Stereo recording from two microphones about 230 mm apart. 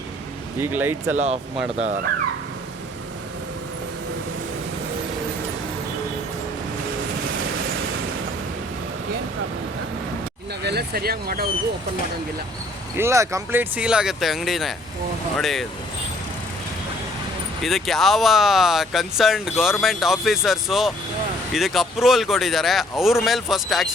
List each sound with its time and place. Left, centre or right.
0.6 s speech: centre
1.1 s speech: right
10.6 s speech: right
13.0 s speech: centre
17.6 s speech: centre